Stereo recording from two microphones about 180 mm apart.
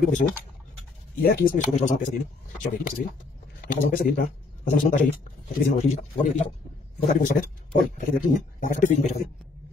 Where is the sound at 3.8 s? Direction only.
50° left (ahead or behind).